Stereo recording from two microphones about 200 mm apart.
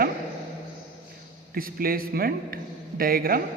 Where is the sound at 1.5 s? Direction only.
45° right (ahead or behind).